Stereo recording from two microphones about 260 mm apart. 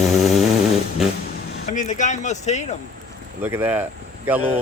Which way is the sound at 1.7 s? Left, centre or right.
Left.